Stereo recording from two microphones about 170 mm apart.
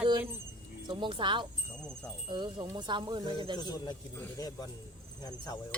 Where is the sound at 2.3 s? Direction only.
25° right (ahead or behind).